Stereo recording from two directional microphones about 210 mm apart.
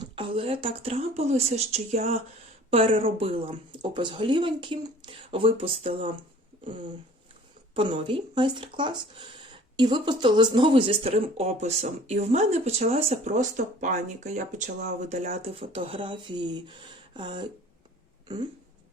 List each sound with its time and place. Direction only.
0.0 s speech: 25° right (ahead or behind)